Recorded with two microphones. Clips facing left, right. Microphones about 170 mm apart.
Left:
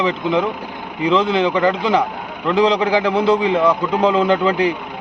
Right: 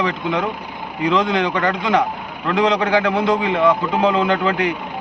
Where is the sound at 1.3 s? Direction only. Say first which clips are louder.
Left 2 dB; 25° left (ahead or behind).